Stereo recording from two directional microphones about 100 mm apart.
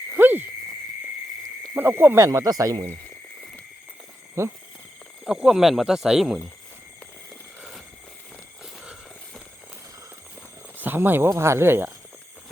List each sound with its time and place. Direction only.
0.1 s a sound: 20° right (ahead or behind)
1.7 s speech: 20° right (ahead or behind); by 2.8 s 35° right (ahead or behind)
4.4 s speech: 30° right (ahead or behind)
5.2 s speech: 5° right (ahead or behind)
10.8 s speech: 20° right (ahead or behind)